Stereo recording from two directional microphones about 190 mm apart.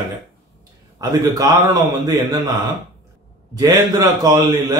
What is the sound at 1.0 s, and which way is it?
Speech, 20° right (ahead or behind).